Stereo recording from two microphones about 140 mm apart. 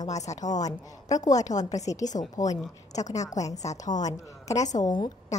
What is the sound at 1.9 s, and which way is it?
A woman's voice, 25° left (ahead or behind).